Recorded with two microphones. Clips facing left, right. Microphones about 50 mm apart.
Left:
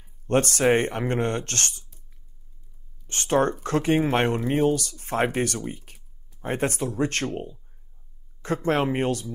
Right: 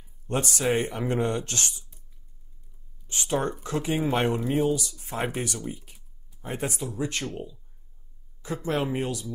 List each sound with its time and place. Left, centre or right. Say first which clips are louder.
0.3 s speech: left 6 dB; left
3.1 s speech: left 5 dB; left
5.6 s speech: left 2 dB; left
8.6 s speech: left 4 dB; left